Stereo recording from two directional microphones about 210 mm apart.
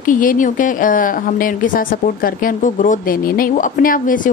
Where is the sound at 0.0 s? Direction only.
40° left (ahead or behind).